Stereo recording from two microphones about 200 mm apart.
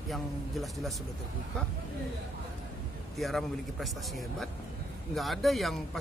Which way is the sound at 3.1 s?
Centre (ahead or behind).